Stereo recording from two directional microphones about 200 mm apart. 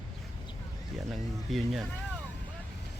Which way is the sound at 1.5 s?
Centre (ahead or behind).